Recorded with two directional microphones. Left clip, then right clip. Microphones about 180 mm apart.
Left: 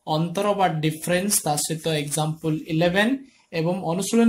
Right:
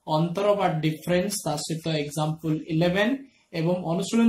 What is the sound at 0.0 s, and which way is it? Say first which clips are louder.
Speech: even; 35° left (ahead or behind).